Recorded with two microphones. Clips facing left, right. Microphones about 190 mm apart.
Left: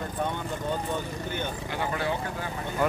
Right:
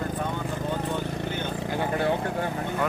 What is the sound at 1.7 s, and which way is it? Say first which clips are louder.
Speech: right 4 dB; 50° right (ahead or behind).